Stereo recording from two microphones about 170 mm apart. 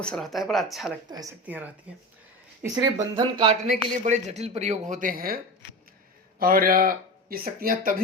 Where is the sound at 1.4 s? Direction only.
10° right (ahead or behind).